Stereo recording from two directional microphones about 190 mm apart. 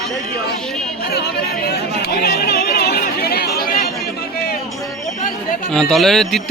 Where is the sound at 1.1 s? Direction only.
55° left (ahead or behind).